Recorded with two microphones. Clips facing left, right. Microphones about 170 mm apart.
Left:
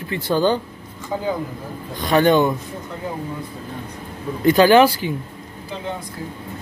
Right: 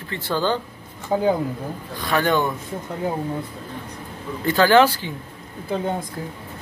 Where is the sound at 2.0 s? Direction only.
20° left (ahead or behind).